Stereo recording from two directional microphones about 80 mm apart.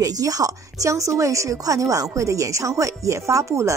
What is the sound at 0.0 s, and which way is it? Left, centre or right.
A woman's voice, right.